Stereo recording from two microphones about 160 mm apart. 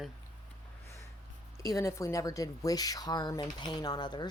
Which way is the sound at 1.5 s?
20° left (ahead or behind).